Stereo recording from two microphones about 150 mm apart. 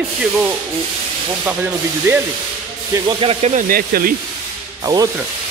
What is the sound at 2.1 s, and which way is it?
Sanding, 20° right (ahead or behind).